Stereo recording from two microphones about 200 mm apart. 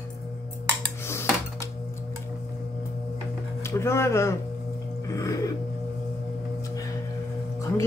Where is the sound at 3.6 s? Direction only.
15° left (ahead or behind).